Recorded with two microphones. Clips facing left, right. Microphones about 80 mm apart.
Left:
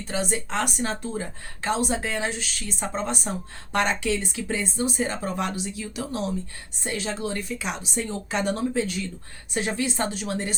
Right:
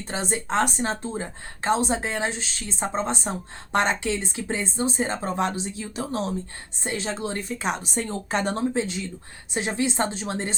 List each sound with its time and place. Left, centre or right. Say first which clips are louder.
0.0 s a woman's voice: left 1 dB; right